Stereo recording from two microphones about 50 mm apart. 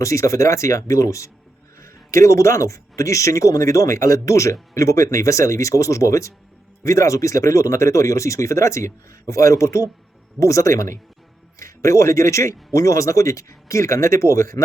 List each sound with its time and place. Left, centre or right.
0.0 s speech: left